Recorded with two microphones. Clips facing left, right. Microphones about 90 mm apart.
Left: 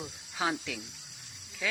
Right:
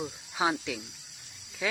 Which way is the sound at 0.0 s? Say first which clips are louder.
Right 4 dB; 15° right (ahead or behind).